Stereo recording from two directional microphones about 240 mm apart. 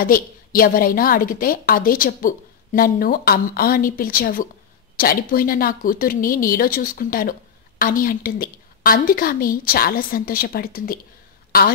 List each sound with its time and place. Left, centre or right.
0.0 s a woman's voice: left